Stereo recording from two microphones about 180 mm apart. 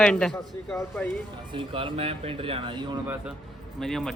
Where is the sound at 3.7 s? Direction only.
5° left (ahead or behind).